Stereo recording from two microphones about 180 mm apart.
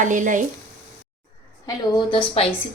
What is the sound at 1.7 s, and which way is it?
Speech, 25° left (ahead or behind).